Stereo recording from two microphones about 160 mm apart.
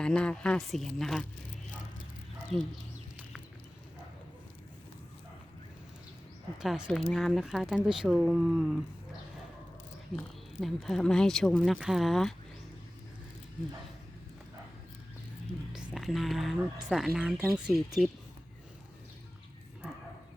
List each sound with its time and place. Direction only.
0.0 s speech: 5° left (ahead or behind)
2.5 s speech: 40° right (ahead or behind)
6.6 s speech: 5° right (ahead or behind)
10.1 s speech: centre (ahead or behind)
15.9 s speech: centre (ahead or behind)